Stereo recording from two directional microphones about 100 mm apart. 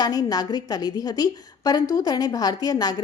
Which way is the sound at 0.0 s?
40° left (ahead or behind).